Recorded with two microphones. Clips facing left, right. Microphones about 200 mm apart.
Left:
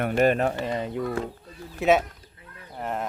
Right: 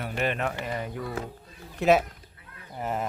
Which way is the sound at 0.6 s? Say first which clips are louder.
Left 4 dB; 25° left (ahead or behind).